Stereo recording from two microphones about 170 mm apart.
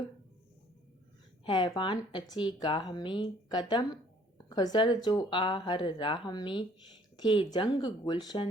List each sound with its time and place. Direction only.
1.5 s a woman's voice: 25° left (ahead or behind)